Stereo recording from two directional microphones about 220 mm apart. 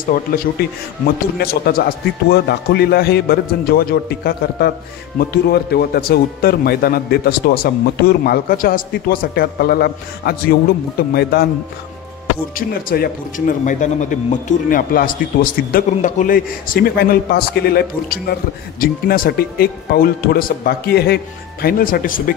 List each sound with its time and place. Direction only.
0.1 s a man's voice: 40° left (ahead or behind)
12.5 s a man's voice: 40° left (ahead or behind)